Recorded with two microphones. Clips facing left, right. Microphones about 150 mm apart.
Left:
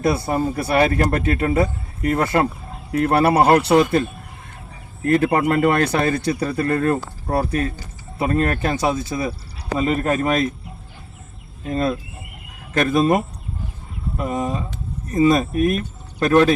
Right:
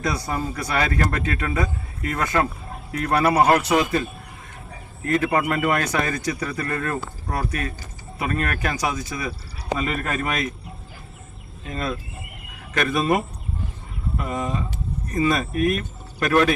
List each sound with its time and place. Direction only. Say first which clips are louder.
0.0 s a man's voice: left 6 dB; 30° left (ahead or behind)
5.0 s a man's voice: left 4 dB; 35° left (ahead or behind)
11.6 s a man's voice: left 7 dB; 30° left (ahead or behind)
14.2 s a sound: left 4 dB; 25° left (ahead or behind)
15.1 s speech: left 6 dB; 25° left (ahead or behind)